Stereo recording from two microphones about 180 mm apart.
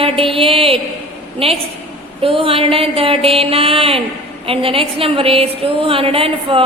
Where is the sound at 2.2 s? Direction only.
30° right (ahead or behind).